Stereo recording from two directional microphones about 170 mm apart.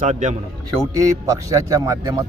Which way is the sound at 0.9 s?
20° right (ahead or behind).